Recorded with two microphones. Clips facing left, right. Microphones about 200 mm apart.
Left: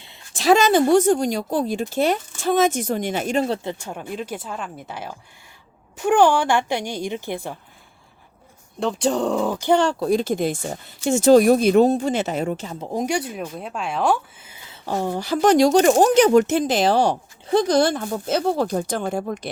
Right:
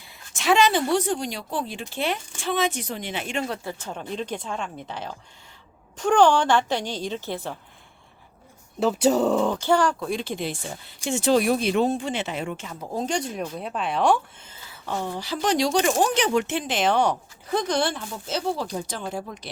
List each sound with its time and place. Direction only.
0.0 s a sound: 25° left (ahead or behind)
0.4 s a woman's voice: 40° left (ahead or behind); by 7.5 s 15° left (ahead or behind)
8.8 s speech: 5° right (ahead or behind)
9.6 s speech: 20° left (ahead or behind)
10.0 s speech: 40° left (ahead or behind)
12.9 s speech: 10° left (ahead or behind)
14.8 s speech: 45° left (ahead or behind)